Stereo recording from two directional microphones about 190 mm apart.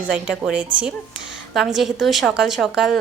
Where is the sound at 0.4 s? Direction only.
5° right (ahead or behind).